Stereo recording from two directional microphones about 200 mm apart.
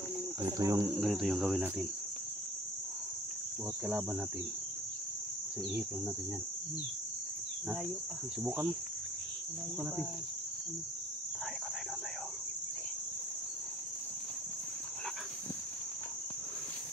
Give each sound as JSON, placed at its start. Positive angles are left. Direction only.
{"t": 0.4, "sound": "speech", "side_deg": -15}
{"t": 1.0, "sound": "cricket", "side_deg": 0}
{"t": 3.8, "sound": "speech", "side_deg": -5}